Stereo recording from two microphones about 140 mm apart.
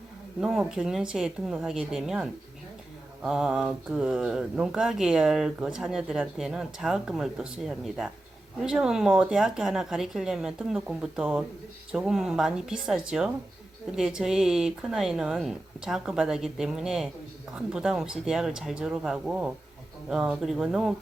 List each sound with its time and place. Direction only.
0.4 s speech: centre (ahead or behind)